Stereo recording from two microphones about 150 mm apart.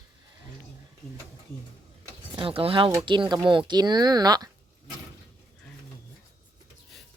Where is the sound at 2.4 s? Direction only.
40° right (ahead or behind).